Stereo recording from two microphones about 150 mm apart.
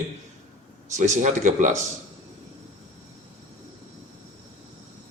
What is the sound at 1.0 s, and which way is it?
Speech, 55° right (ahead or behind).